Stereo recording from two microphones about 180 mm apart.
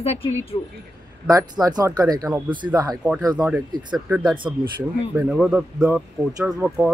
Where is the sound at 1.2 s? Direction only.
20° right (ahead or behind).